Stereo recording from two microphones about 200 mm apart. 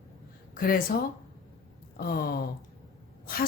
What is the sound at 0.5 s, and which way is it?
Speech, 45° left (ahead or behind).